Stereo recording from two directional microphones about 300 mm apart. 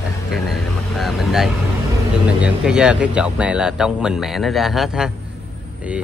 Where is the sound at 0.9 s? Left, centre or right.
Centre.